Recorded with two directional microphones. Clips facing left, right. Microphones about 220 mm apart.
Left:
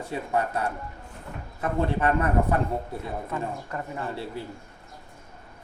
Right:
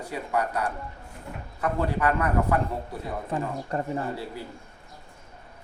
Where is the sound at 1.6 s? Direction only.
25° left (ahead or behind).